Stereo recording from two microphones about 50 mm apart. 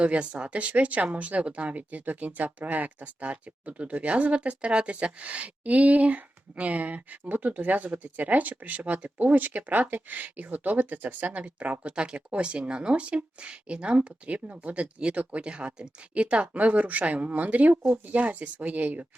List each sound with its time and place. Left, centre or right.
0.0 s speech: right